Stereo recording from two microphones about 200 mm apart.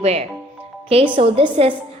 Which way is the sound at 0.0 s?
30° right (ahead or behind).